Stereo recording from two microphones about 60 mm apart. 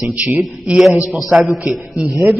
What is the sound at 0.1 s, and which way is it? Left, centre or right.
Speech, right.